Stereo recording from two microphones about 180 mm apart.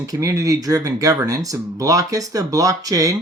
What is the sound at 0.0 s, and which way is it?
Speech, 15° right (ahead or behind).